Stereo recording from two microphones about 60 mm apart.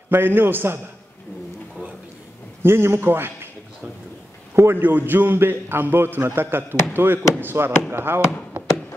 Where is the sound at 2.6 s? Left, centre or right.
Right.